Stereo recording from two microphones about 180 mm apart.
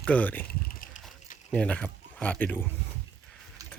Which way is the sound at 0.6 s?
50° left (ahead or behind).